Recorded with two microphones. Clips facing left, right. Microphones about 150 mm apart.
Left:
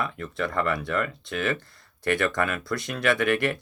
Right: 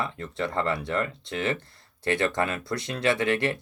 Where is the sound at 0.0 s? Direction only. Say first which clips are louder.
Left 1 dB; 25° right (ahead or behind).